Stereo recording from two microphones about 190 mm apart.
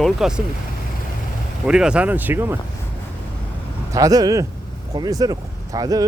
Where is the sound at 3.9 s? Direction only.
20° right (ahead or behind).